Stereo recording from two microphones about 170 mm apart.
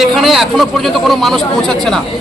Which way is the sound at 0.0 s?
Centre (ahead or behind).